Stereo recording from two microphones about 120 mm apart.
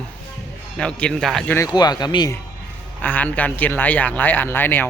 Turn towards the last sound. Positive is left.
turn(degrees=15)  # may be behind; listen again after turning